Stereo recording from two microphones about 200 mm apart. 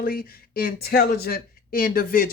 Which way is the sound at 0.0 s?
45° left (ahead or behind).